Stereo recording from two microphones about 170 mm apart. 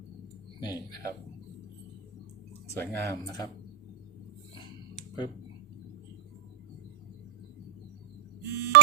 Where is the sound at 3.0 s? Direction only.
20° left (ahead or behind).